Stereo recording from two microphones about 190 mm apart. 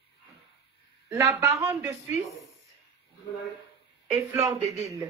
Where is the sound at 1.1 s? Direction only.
15° right (ahead or behind).